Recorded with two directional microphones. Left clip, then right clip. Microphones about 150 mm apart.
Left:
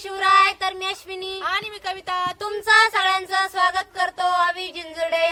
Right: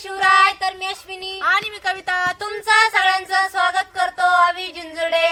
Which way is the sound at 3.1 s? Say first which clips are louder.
Right 3 dB; 10° right (ahead or behind).